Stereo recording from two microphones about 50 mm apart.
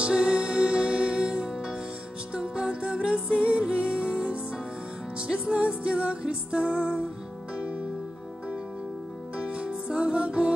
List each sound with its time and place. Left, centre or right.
0.0 s music: centre
9.4 s music: centre